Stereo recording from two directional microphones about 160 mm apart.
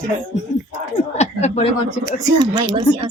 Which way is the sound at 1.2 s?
45° left (ahead or behind).